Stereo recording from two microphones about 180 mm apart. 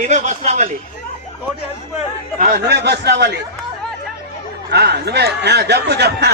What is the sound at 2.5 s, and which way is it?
Speech, 65° right (ahead or behind).